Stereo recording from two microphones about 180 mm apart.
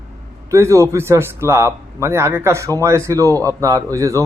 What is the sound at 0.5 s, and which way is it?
A man's voice, 15° right (ahead or behind).